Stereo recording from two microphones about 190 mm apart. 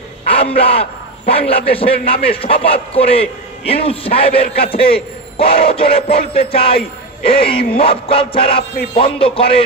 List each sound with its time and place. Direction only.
0.3 s a man's voice: 30° left (ahead or behind)
5.4 s battle cry: 30° left (ahead or behind)